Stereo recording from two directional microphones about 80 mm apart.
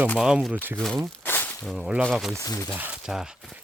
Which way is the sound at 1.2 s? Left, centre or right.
Left.